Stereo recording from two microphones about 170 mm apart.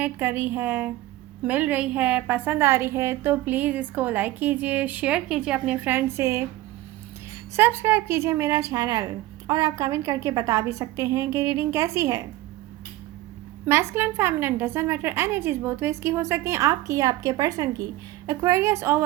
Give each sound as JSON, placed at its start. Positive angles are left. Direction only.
{"t": 0.0, "sound": "a woman's voice", "side_deg": -10}
{"t": 7.5, "sound": "a woman's voice", "side_deg": -15}
{"t": 13.7, "sound": "a woman's voice", "side_deg": -15}